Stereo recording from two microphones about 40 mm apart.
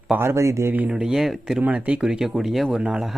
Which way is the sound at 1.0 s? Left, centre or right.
Centre.